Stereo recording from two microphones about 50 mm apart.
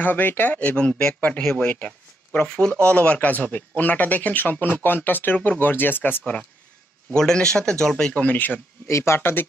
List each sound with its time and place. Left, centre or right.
0.0 s speech: left
0.6 s speech: left
1.6 s a sound: left
2.4 s speech: centre
2.7 s speech: left
7.2 s speech: centre
8.1 s speech: left
8.8 s speech: left